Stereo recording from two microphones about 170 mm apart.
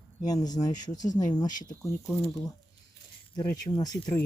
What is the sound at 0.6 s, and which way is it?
Speech, 30° left (ahead or behind).